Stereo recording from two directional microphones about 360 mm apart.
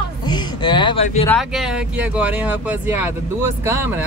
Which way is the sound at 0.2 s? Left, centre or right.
Centre.